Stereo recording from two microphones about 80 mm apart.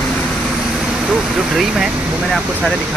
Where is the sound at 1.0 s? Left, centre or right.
Centre.